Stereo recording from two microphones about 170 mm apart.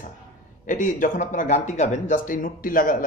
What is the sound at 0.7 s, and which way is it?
Speech, 45° left (ahead or behind).